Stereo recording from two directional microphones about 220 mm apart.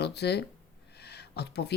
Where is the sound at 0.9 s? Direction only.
50° left (ahead or behind).